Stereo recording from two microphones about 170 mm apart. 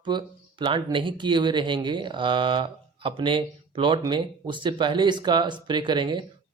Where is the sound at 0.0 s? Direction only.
25° right (ahead or behind).